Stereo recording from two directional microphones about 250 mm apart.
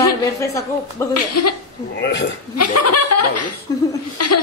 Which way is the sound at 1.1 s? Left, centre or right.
Left.